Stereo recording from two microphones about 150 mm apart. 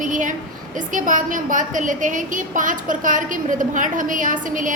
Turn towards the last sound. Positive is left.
turn(degrees=-60)  # may be behind; listen again after turning